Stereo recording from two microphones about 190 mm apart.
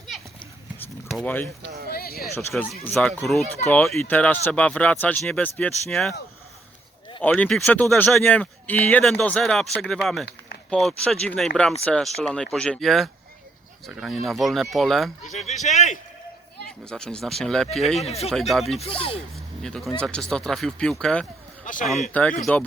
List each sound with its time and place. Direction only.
0.8 s a sound: 5° left (ahead or behind)
1.9 s speech: 50° left (ahead or behind)
2.8 s speech: 5° left (ahead or behind)
7.2 s speech: 10° left (ahead or behind)
15.2 s a man's voice: 40° left (ahead or behind)
16.6 s speech: 5° left (ahead or behind)
18.0 s a man's voice: 35° left (ahead or behind)
18.3 s speech: centre (ahead or behind)
18.8 s speech: 30° left (ahead or behind)
19.6 s speech: 5° left (ahead or behind)
21.6 s speech: 45° left (ahead or behind)
21.8 s speech: centre (ahead or behind)